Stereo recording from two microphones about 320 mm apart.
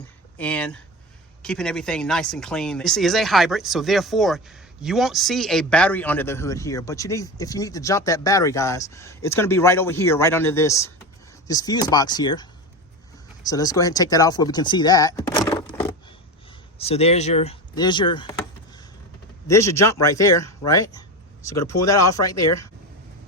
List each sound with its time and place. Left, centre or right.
0.3 s speech: centre
16.7 s speech: centre
19.5 s speech: centre